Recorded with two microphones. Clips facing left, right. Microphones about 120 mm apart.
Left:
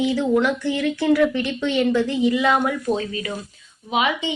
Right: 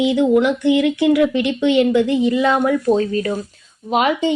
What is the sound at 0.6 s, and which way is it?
Speech, 60° right (ahead or behind).